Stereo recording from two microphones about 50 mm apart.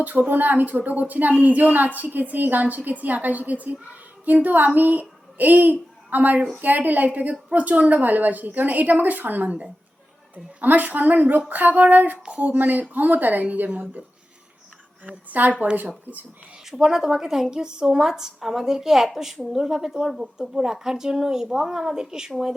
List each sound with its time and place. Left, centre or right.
0.0 s a woman's voice: right
16.6 s a woman's voice: centre